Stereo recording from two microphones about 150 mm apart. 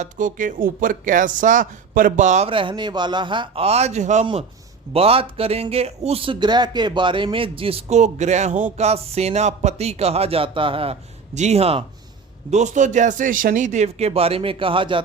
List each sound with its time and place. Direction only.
0.0 s speech: 60° right (ahead or behind)
2.5 s a man's voice: 35° right (ahead or behind)
11.3 s speech: 45° right (ahead or behind)
12.5 s speech: 50° right (ahead or behind); by 15.0 s 35° right (ahead or behind)